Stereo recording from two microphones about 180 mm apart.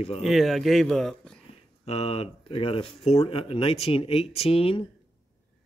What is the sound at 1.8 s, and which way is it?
Speech, 35° left (ahead or behind).